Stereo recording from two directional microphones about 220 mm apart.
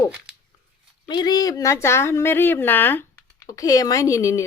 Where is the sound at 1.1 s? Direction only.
20° left (ahead or behind).